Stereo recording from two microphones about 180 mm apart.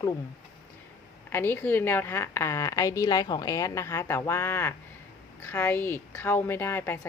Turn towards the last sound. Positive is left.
turn(degrees=10)  # may be behind; listen again after turning